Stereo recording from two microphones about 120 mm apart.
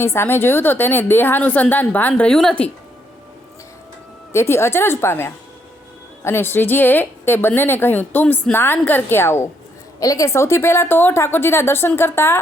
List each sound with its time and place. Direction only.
0.0 s a woman's voice: 20° left (ahead or behind)
4.3 s a woman's voice: 20° left (ahead or behind)